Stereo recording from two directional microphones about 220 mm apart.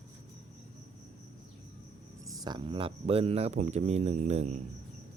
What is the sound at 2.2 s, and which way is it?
Speech, 15° right (ahead or behind).